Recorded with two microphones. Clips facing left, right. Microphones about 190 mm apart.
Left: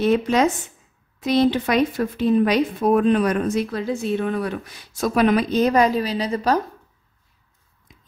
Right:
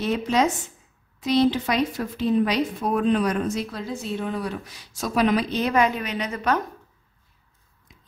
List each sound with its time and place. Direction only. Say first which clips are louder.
0.0 s speech: left 4 dB; 55° left (ahead or behind); by 6.6 s 35° left (ahead or behind)